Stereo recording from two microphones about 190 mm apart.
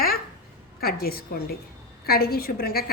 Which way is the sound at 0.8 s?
50° left (ahead or behind).